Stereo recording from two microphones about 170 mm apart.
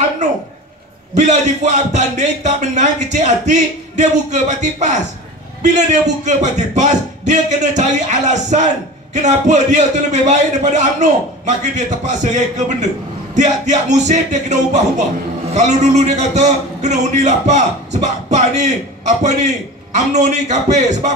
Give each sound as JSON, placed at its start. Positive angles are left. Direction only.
{"t": 1.1, "sound": "a man's voice", "side_deg": -40}